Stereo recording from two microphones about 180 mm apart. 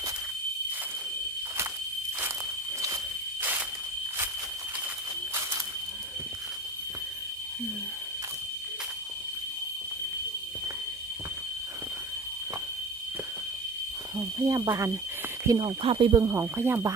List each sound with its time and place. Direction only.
14.2 s speech: 20° right (ahead or behind)
16.2 s speech: 15° right (ahead or behind)